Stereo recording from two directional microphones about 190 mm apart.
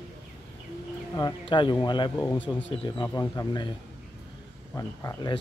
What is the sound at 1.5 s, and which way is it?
Speech, 25° left (ahead or behind).